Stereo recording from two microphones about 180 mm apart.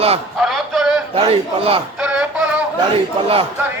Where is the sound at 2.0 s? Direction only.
5° right (ahead or behind).